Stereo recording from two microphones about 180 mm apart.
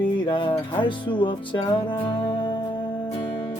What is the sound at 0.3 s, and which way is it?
Music, 30° left (ahead or behind).